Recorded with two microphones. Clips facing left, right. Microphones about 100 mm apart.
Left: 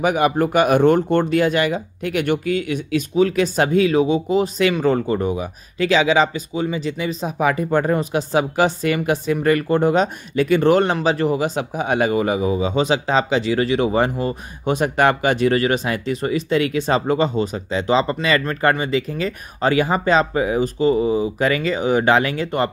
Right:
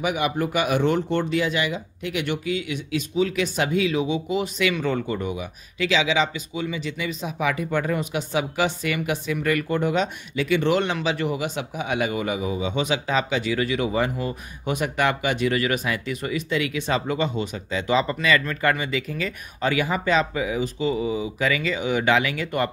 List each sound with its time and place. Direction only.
0.0 s speech: 45° left (ahead or behind)